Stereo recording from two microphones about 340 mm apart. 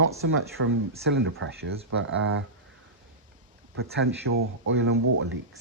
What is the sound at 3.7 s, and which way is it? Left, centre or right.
Speech, right.